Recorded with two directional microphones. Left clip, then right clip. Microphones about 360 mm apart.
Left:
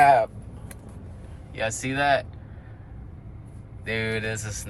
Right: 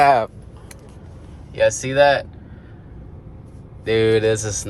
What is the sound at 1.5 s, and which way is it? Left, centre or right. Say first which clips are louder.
Speech: right 11 dB; centre.